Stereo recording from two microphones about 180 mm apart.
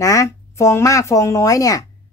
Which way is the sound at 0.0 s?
20° left (ahead or behind).